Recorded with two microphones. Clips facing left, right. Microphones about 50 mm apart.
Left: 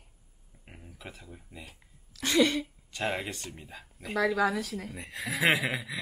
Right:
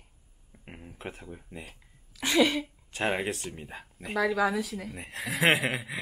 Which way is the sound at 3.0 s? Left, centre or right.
Right.